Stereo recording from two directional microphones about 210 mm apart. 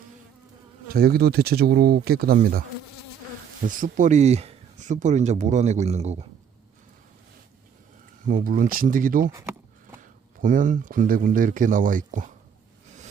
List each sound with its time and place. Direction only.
0.9 s speech: 45° right (ahead or behind); by 6.2 s 30° right (ahead or behind)
8.3 s speech: 40° right (ahead or behind)
9.3 s a sound: 10° right (ahead or behind)
10.0 s speech: 40° right (ahead or behind)